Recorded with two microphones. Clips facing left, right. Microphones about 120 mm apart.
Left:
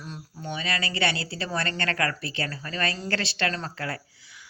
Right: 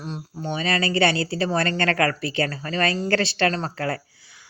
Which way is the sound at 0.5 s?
35° right (ahead or behind).